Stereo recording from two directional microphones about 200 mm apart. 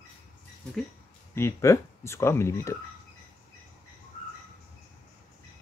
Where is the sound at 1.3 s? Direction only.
15° left (ahead or behind).